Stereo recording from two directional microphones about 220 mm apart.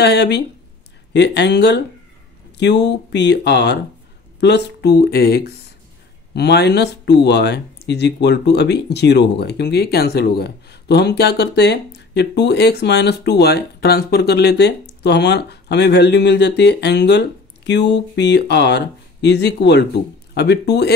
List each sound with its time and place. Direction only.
0.0 s speech: 50° left (ahead or behind)